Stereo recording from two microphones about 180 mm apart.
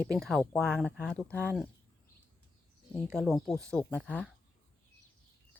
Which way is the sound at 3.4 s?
5° left (ahead or behind).